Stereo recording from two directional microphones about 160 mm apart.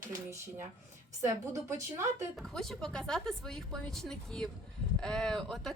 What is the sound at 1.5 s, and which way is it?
Speech, 20° right (ahead or behind).